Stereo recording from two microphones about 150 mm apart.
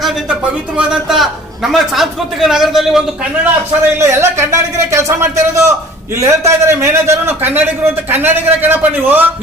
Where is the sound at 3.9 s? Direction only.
15° right (ahead or behind).